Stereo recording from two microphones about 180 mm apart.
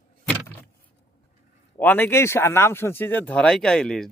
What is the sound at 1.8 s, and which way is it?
Speech, 10° left (ahead or behind).